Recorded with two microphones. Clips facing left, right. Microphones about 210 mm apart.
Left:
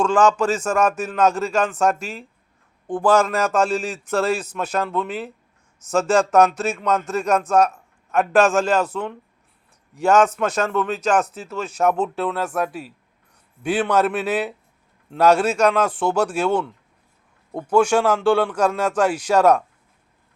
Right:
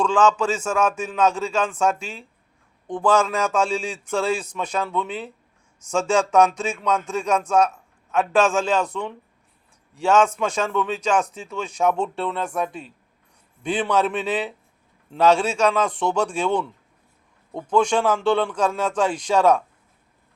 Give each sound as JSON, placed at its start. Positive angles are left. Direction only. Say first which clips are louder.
{"t": 0.0, "sound": "a man's voice", "louder": "left 2 dB", "side_deg": 10}